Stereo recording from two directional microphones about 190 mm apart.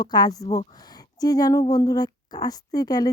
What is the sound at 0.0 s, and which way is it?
Speech, 20° left (ahead or behind).